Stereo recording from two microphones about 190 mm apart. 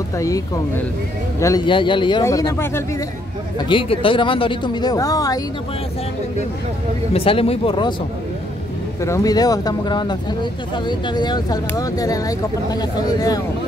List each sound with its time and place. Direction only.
1.4 s speech: 20° left (ahead or behind)
3.5 s speech: 25° left (ahead or behind)
7.2 s speech: 30° left (ahead or behind)
9.0 s speech: 15° left (ahead or behind)